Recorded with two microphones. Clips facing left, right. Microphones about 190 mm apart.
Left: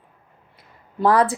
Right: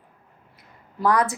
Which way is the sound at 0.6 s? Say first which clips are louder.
Left 4 dB; 30° left (ahead or behind).